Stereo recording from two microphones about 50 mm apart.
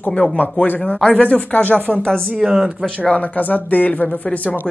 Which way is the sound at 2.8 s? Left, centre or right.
Centre.